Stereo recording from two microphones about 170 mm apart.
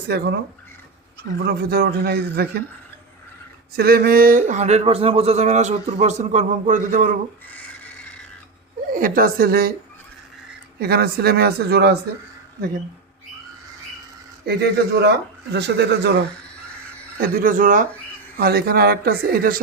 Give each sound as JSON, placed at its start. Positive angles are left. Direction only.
{"t": 0.1, "sound": "a man's voice", "side_deg": -70}
{"t": 1.4, "sound": "a man's voice", "side_deg": -70}
{"t": 3.8, "sound": "speech", "side_deg": -65}
{"t": 8.9, "sound": "speech", "side_deg": -55}
{"t": 10.8, "sound": "a man's voice", "side_deg": -70}
{"t": 14.4, "sound": "a man's voice", "side_deg": -75}
{"t": 15.5, "sound": "speech", "side_deg": -85}
{"t": 17.2, "sound": "speech", "side_deg": -60}
{"t": 18.3, "sound": "speech", "side_deg": -65}